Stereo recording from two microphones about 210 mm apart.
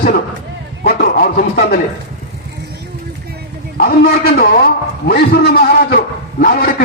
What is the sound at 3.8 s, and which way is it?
A man's voice, 45° left (ahead or behind).